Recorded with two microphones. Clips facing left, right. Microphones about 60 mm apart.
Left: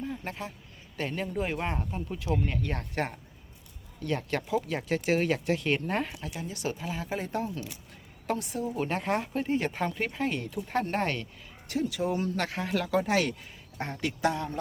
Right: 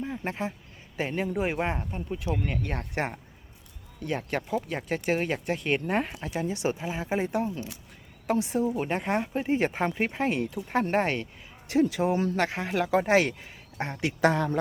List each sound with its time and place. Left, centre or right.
0.0 s a sound: right
0.9 s speech: centre
1.9 s speech: centre
6.1 s speech: right
6.5 s speech: right
7.3 s speech: centre
8.4 s speech: right
8.8 s speech: centre
9.5 s speech: right
10.4 s speech: centre
10.8 s speech: right
13.7 s speech: centre
14.3 s speech: right